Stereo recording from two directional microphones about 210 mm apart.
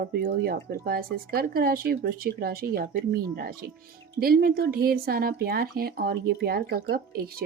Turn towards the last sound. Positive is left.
turn(degrees=-45)  # may be behind; listen again after turning